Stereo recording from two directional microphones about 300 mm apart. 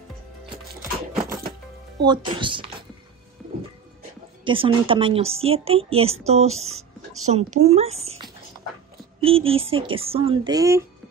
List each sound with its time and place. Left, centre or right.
1.2 s music: right
2.0 s speech: centre
4.5 s a woman's voice: centre